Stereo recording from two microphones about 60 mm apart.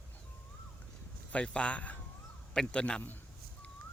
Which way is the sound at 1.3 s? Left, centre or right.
Centre.